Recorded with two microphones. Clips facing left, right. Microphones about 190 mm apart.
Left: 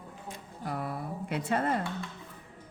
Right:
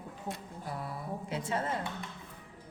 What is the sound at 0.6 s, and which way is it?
A woman's voice, 60° left (ahead or behind).